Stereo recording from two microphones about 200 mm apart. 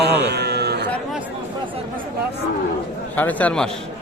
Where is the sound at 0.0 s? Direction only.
55° right (ahead or behind).